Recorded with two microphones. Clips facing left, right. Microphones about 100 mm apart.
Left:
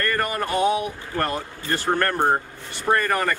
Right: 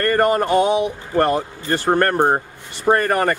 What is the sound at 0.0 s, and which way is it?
A man's voice, 35° right (ahead or behind).